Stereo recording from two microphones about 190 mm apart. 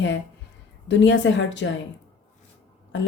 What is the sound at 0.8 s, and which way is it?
Speech, 75° left (ahead or behind).